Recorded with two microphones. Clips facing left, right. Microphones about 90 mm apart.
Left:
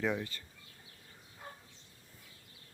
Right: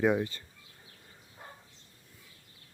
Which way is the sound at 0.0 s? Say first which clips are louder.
Right 7 dB; 20° right (ahead or behind).